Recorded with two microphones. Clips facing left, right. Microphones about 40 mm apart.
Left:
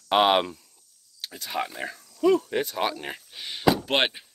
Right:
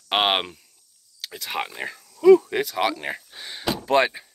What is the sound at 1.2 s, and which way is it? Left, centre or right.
Speech, right.